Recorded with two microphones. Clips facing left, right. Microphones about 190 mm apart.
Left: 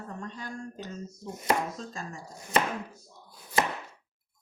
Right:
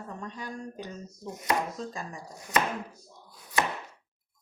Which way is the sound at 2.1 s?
25° left (ahead or behind).